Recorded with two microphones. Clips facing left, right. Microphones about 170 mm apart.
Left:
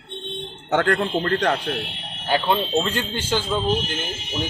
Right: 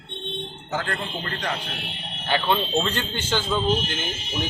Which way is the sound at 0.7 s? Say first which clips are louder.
Left 9 dB; 65° left (ahead or behind).